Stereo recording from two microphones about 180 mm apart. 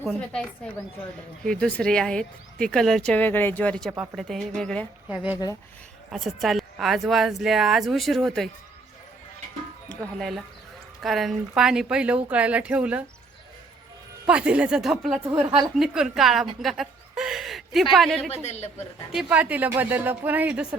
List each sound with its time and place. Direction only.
0.0 s speech: 5° left (ahead or behind)
5.0 s speech: 10° right (ahead or behind)
10.2 s speech: centre (ahead or behind)
14.3 s speech: 5° right (ahead or behind)
15.3 s a woman's voice: 25° right (ahead or behind)
15.8 s a woman's voice: 5° right (ahead or behind)
18.4 s a woman's voice: 35° left (ahead or behind)
19.1 s speech: 10° right (ahead or behind)